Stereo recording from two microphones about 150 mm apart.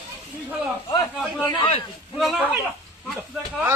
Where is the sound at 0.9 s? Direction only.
25° left (ahead or behind).